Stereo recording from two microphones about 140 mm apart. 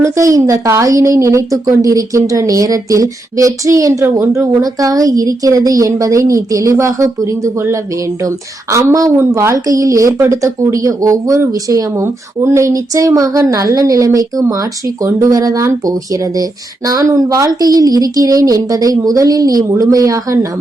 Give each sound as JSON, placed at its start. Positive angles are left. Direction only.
{"t": 0.0, "sound": "speech", "side_deg": -25}